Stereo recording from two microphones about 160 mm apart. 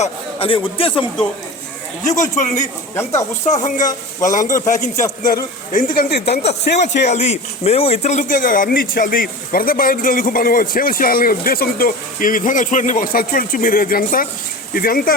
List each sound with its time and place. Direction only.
0.0 s a man's voice: 35° left (ahead or behind)
2.3 s speech: 50° left (ahead or behind)
2.9 s speech: 15° left (ahead or behind)
3.4 s a man's voice: 50° left (ahead or behind); by 6.8 s 75° left (ahead or behind)
7.0 s speech: 45° left (ahead or behind); by 15.1 s 65° left (ahead or behind)